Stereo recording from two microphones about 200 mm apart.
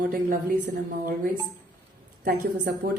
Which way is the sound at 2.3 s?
45° right (ahead or behind).